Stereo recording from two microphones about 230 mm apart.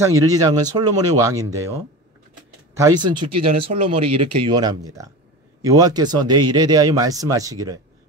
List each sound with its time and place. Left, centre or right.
0.0 s speech: centre